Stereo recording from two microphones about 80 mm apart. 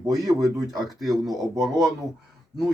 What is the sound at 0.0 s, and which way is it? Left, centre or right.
Speech, right.